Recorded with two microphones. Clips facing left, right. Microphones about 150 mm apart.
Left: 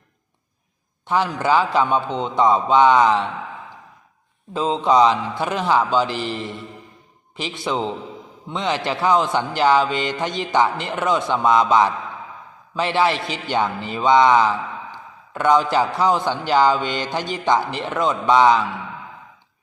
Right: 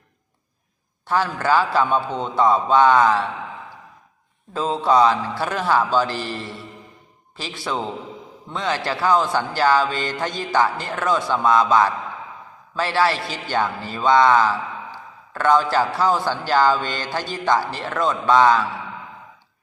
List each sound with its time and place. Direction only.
1.0 s a man's voice: 15° left (ahead or behind)
4.5 s a man's voice: 20° left (ahead or behind)